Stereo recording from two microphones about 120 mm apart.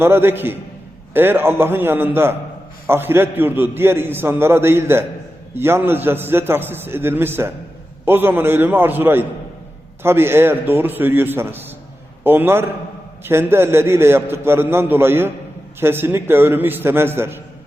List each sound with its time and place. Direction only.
0.0 s a man's voice: 20° right (ahead or behind)